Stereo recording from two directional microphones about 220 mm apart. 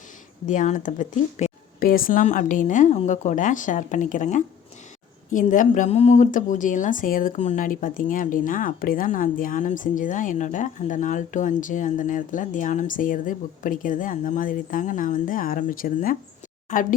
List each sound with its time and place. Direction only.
0.4 s speech: 35° left (ahead or behind)